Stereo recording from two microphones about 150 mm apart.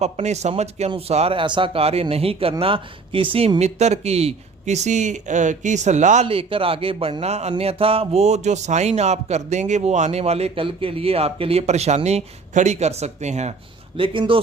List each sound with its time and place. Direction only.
0.0 s speech: 50° right (ahead or behind)
6.2 s speech: 35° right (ahead or behind)
13.9 s speech: 35° right (ahead or behind)